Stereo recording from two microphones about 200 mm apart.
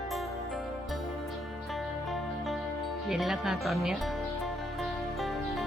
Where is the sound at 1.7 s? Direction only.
Centre (ahead or behind).